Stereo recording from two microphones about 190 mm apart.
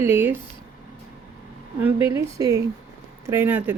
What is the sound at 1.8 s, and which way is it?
Speech, 10° right (ahead or behind).